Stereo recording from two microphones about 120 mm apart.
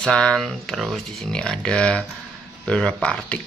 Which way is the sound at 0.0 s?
5° left (ahead or behind).